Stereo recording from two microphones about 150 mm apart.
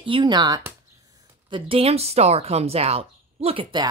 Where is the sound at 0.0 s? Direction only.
35° right (ahead or behind).